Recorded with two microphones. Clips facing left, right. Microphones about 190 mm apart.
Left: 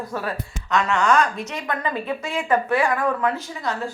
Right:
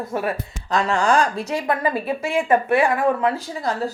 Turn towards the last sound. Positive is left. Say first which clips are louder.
# right 3 dB
turn(degrees=-35)  # may be behind; listen again after turning